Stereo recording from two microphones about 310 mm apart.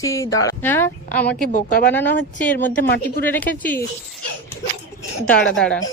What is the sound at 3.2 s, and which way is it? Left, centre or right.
Speech, centre.